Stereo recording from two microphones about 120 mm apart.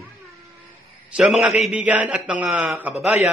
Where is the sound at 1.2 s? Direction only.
5° right (ahead or behind).